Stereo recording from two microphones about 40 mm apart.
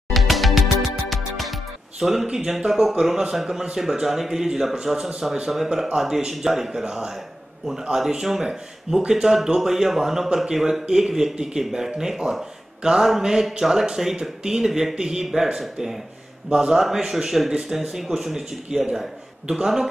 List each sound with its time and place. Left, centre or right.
0.1 s music: centre
2.5 s speech: centre